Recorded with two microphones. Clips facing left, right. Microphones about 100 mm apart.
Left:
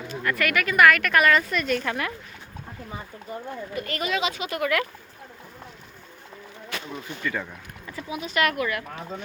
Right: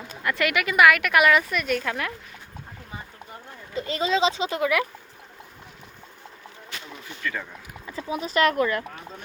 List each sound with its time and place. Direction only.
0.2 s speech: 20° right (ahead or behind); by 2.1 s centre (ahead or behind)
3.8 s speech: 20° right (ahead or behind)
7.2 s speech: 10° left (ahead or behind)
8.0 s speech: 35° right (ahead or behind)